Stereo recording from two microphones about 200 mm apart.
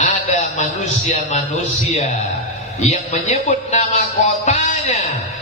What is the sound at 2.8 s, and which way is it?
A man's voice, 35° left (ahead or behind).